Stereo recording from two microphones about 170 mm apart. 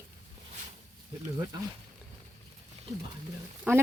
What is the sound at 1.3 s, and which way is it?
Speech, 25° right (ahead or behind).